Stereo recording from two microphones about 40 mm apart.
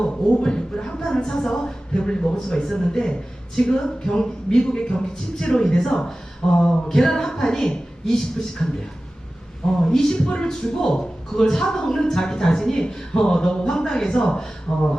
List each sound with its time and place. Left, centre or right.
0.3 s speech: left
9.9 s speech: centre
10.2 s speech: left